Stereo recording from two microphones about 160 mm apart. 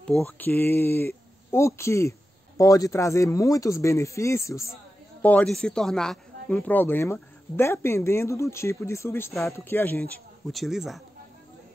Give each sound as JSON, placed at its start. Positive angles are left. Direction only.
{"t": 0.4, "sound": "speech", "side_deg": 10}
{"t": 10.5, "sound": "a man's voice", "side_deg": 0}